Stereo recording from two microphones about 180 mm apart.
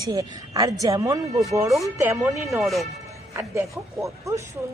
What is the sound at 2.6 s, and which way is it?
Speech, centre (ahead or behind).